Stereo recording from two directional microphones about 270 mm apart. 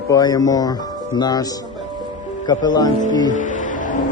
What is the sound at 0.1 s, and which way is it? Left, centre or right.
Speech, centre.